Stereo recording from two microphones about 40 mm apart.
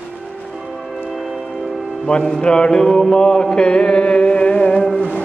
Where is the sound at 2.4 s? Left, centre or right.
Left.